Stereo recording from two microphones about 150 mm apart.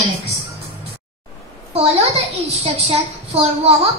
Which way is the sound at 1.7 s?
40° right (ahead or behind).